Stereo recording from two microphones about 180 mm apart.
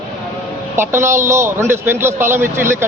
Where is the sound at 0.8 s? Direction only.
15° right (ahead or behind).